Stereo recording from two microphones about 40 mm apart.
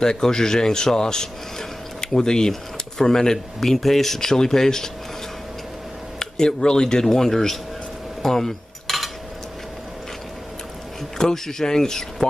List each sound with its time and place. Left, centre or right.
0.0 s speech: centre
6.1 s speech: centre
8.2 s a sound: centre
11.1 s speech: centre